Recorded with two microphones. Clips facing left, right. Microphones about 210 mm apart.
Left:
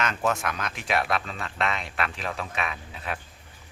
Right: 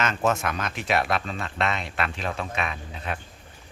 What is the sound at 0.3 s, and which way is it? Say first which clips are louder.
Speech: right 2 dB; centre (ahead or behind).